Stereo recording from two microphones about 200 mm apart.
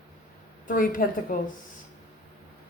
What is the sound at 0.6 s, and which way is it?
Speech, 45° left (ahead or behind).